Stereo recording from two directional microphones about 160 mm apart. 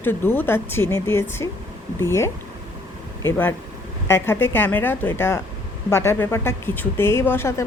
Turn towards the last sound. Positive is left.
turn(degrees=15)  # may be behind; listen again after turning